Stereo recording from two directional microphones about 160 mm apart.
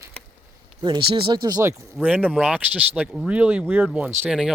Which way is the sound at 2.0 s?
10° right (ahead or behind).